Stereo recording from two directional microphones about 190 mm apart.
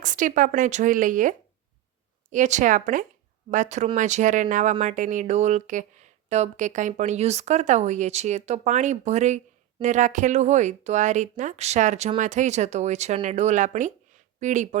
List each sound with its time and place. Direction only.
0.0 s speech: 45° right (ahead or behind)